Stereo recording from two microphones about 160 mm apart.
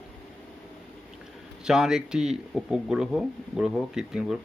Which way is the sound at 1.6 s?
5° right (ahead or behind).